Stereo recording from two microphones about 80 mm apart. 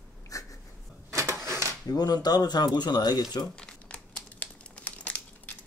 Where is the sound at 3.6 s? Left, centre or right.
Centre.